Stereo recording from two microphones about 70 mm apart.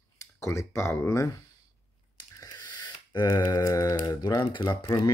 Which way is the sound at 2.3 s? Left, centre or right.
Left.